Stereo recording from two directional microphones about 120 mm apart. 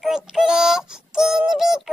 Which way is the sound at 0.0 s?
5° right (ahead or behind).